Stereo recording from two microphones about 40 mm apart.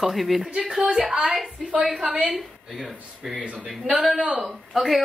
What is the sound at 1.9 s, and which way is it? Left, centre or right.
Speech, right.